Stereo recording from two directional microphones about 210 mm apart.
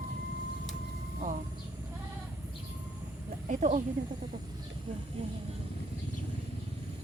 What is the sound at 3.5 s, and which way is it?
Speech, 35° right (ahead or behind).